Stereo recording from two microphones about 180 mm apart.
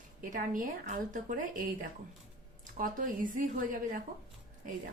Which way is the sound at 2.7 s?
50° right (ahead or behind).